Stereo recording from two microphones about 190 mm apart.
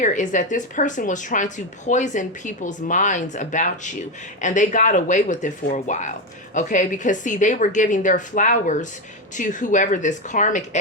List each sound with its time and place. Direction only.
0.0 s speech: 40° left (ahead or behind)